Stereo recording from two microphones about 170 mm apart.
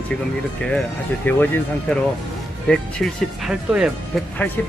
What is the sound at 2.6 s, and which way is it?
Speech, centre (ahead or behind).